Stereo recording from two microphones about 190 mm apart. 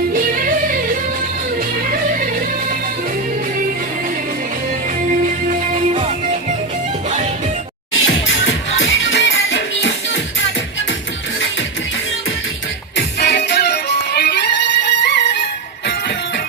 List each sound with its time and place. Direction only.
0.1 s music: 45° right (ahead or behind)
5.5 s music: 40° right (ahead or behind)
7.9 s music: 85° left
13.0 s music: 60° left (ahead or behind)